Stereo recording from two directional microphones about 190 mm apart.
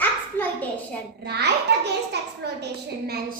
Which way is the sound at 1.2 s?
60° right (ahead or behind).